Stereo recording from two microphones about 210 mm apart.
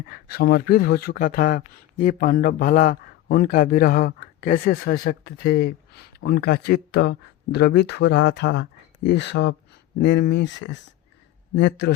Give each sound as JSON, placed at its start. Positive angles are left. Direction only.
{"t": 0.1, "sound": "speech", "side_deg": 45}